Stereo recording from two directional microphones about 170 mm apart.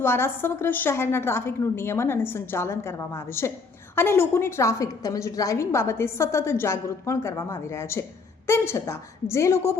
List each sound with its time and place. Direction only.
0.0 s a woman's voice: 15° left (ahead or behind)